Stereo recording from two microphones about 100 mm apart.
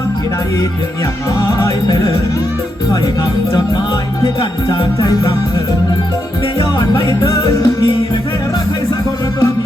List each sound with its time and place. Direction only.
1.4 s music: 30° left (ahead or behind)
4.9 s music: 35° left (ahead or behind)
6.9 s music: 35° left (ahead or behind)